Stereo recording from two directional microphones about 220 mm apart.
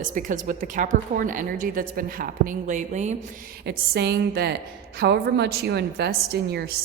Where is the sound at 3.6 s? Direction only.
45° right (ahead or behind).